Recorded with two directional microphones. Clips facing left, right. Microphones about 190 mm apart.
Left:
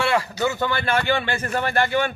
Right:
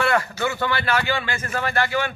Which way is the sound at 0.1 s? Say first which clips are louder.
Left 1 dB; 10° left (ahead or behind).